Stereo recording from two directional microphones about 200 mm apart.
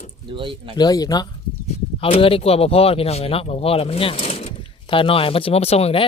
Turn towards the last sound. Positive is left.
turn(degrees=30)  # may be behind; listen again after turning